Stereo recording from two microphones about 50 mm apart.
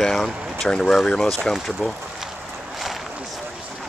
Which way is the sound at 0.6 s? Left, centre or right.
Centre.